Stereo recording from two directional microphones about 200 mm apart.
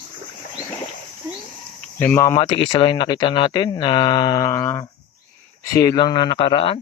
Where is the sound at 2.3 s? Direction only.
25° left (ahead or behind).